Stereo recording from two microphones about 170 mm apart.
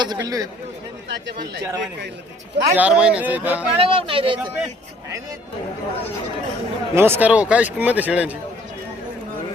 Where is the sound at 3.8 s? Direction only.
35° right (ahead or behind).